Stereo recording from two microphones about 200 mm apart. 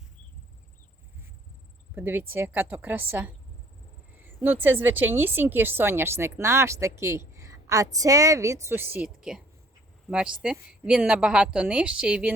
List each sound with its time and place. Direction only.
2.0 s a woman's voice: 10° right (ahead or behind)